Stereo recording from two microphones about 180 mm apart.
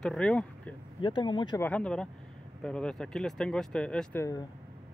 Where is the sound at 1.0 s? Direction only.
25° left (ahead or behind).